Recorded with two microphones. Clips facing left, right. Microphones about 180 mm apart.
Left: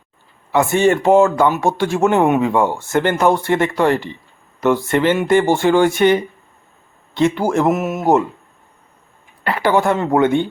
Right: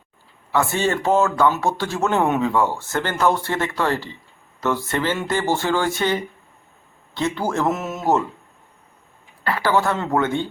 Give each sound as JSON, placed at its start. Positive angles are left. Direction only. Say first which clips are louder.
{"t": 0.5, "sound": "speech", "louder": "left 6 dB", "side_deg": 20}
{"t": 9.4, "sound": "speech", "louder": "left 4 dB", "side_deg": 20}